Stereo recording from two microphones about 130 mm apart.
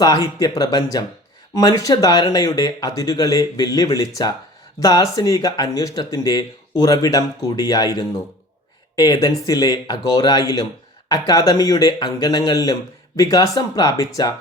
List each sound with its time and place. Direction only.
0.0 s speech: 30° left (ahead or behind)